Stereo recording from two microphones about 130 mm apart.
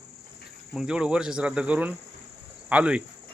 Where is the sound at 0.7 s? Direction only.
5° right (ahead or behind).